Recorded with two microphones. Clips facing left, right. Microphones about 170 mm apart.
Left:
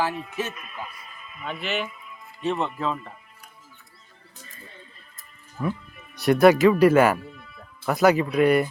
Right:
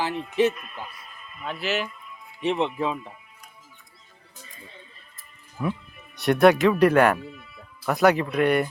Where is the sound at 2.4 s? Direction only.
15° right (ahead or behind).